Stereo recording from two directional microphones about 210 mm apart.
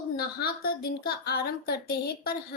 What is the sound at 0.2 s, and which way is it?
A woman's voice, 45° left (ahead or behind).